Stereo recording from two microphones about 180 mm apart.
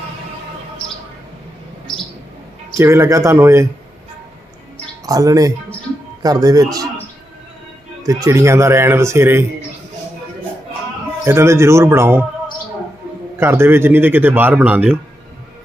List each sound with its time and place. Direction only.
2.7 s speech: 15° right (ahead or behind)
5.0 s speech: 20° right (ahead or behind)
8.0 s speech: 15° right (ahead or behind)
11.3 s speech: 15° right (ahead or behind)
13.4 s speech: 15° right (ahead or behind)